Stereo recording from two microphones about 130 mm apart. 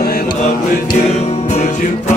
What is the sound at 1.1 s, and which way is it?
Music, 60° left (ahead or behind).